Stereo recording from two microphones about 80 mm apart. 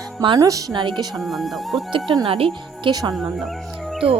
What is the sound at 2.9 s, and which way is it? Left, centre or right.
Speech, right.